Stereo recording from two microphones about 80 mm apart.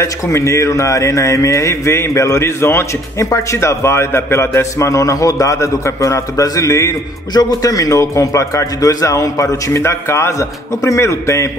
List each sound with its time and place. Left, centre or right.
0.0 s a man's voice: left
7.3 s a man's voice: left